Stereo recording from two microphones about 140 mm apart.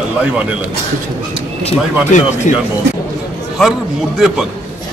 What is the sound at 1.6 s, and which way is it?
Speech, 55° left (ahead or behind).